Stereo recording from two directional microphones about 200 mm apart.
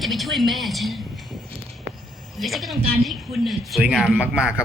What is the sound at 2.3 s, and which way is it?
A woman's voice, centre (ahead or behind).